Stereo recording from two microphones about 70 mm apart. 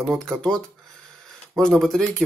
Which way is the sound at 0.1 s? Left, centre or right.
Centre.